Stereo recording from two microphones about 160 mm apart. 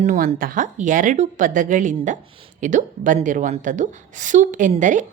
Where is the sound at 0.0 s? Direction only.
50° right (ahead or behind).